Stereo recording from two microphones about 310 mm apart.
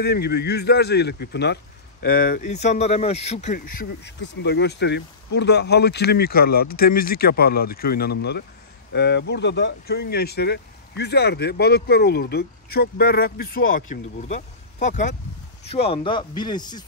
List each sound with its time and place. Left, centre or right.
0.0 s speech: left
4.0 s speech: left; by 16.8 s centre